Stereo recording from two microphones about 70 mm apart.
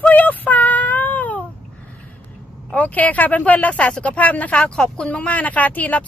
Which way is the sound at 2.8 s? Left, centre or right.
Left.